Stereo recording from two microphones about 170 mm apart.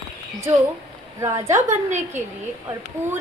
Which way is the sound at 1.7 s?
45° right (ahead or behind).